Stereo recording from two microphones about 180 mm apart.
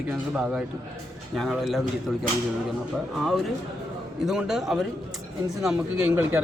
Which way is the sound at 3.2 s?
Centre (ahead or behind).